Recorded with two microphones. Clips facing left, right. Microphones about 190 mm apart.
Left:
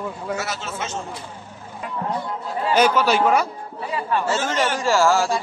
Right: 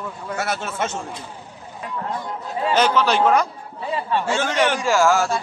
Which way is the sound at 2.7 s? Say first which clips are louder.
Left 1 dB; 10° left (ahead or behind).